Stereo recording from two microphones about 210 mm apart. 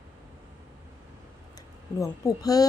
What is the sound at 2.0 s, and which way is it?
Speech, 15° left (ahead or behind).